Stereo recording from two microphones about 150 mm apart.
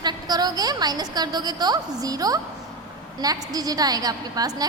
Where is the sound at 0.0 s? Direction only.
25° right (ahead or behind).